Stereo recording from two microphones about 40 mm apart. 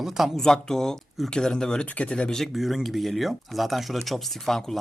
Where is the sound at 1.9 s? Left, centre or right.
Left.